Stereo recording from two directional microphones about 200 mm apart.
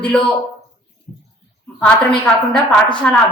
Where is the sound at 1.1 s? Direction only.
45° left (ahead or behind).